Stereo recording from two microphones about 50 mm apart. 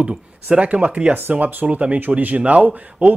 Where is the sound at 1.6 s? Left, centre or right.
Right.